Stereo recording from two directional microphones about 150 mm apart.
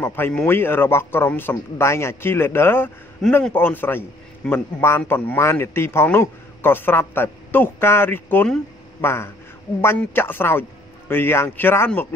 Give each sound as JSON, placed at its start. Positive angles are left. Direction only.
{"t": 0.0, "sound": "speech", "side_deg": 15}